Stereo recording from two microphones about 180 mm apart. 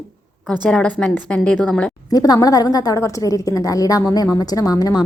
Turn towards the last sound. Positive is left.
turn(degrees=20)  # may be behind; listen again after turning